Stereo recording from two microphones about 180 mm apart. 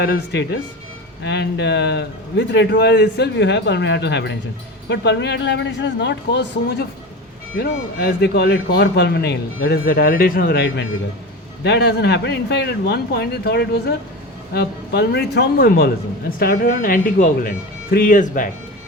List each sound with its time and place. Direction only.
0.0 s a man's voice: 70° left (ahead or behind)
7.5 s a man's voice: 55° left (ahead or behind)